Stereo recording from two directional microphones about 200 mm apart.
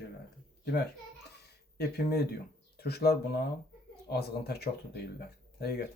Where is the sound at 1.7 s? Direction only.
50° left (ahead or behind).